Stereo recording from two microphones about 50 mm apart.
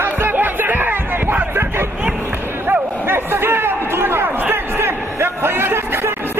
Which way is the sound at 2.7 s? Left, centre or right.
Right.